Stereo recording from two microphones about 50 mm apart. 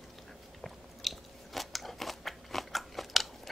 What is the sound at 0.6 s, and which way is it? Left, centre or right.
Biting, centre.